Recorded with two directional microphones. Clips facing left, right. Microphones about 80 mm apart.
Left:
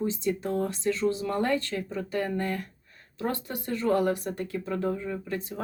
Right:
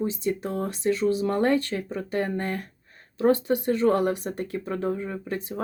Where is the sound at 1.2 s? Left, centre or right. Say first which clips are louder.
Right 4 dB; right.